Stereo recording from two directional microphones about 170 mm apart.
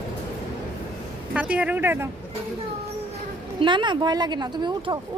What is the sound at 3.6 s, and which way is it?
A woman's voice, 30° right (ahead or behind).